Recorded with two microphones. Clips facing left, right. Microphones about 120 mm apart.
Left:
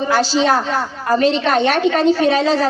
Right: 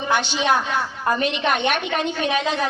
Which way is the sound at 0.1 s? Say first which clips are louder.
Left 4 dB; 35° left (ahead or behind).